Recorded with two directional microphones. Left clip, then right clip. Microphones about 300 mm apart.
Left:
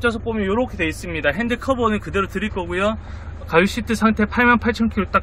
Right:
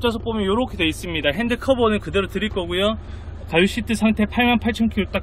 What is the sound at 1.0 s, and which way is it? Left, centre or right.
Speech, centre.